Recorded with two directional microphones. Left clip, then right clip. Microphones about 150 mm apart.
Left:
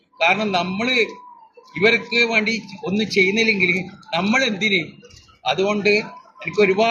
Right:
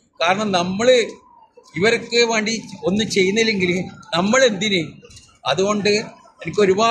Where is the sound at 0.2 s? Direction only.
40° right (ahead or behind).